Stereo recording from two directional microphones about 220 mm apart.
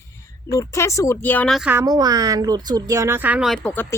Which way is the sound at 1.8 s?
15° right (ahead or behind).